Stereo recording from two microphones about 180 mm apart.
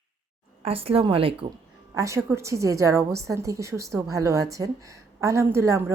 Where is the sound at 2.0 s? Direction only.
15° right (ahead or behind).